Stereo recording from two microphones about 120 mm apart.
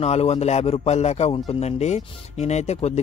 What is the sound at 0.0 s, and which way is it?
Speech, 60° left (ahead or behind).